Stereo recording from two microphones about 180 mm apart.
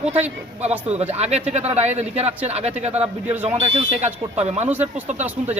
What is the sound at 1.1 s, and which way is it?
A man's voice, 35° right (ahead or behind).